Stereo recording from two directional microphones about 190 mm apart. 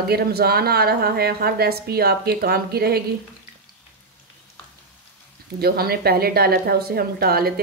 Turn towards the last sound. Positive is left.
turn(degrees=-55)  # may be behind; listen again after turning